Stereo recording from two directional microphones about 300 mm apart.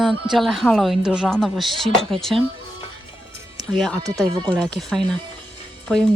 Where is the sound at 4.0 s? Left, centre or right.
Centre.